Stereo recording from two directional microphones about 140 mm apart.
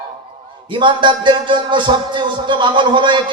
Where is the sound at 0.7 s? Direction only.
35° right (ahead or behind).